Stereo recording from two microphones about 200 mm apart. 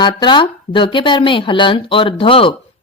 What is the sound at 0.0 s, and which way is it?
A woman's voice, 25° left (ahead or behind).